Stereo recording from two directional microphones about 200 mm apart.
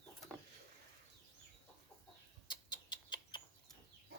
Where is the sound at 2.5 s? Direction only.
20° left (ahead or behind).